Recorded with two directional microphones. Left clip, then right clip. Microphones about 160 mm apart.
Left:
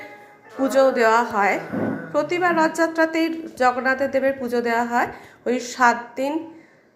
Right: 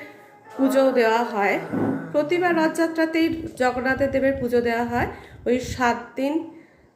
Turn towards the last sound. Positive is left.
turn(degrees=-20)  # may be behind; listen again after turning